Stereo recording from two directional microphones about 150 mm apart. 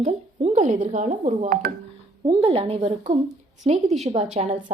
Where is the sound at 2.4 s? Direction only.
40° right (ahead or behind).